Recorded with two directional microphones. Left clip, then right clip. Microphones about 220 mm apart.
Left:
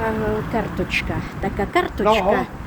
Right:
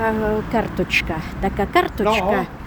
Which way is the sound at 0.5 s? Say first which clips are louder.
Right 3 dB; 25° right (ahead or behind).